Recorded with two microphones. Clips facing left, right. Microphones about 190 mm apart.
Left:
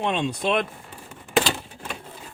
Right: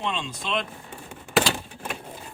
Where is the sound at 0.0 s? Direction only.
60° left (ahead or behind).